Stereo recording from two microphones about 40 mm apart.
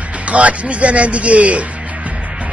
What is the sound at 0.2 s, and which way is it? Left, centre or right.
Speech, right.